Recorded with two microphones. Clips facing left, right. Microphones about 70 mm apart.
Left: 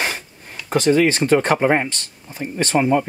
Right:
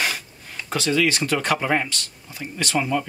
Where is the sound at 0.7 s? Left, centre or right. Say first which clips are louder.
Left 6 dB; left.